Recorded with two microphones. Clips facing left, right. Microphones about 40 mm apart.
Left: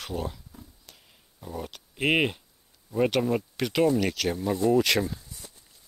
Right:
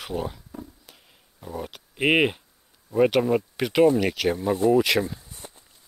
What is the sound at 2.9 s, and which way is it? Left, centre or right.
Speech, centre.